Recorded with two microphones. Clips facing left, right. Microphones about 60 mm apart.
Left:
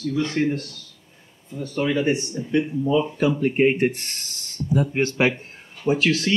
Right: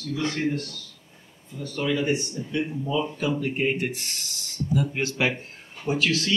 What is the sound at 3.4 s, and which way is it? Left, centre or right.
Speech, left.